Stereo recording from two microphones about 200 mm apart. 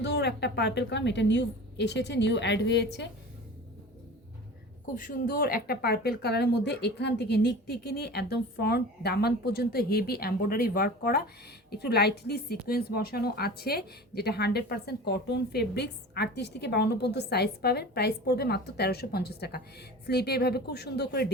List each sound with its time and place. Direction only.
0.0 s a woman's voice: 60° left (ahead or behind)
4.9 s a woman's voice: 45° left (ahead or behind)